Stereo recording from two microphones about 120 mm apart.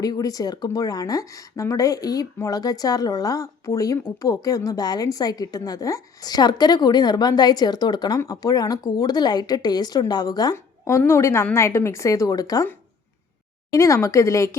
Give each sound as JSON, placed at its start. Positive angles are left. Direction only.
{"t": 0.0, "sound": "speech", "side_deg": 30}
{"t": 10.8, "sound": "a woman's voice", "side_deg": 20}
{"t": 13.7, "sound": "a woman's voice", "side_deg": 25}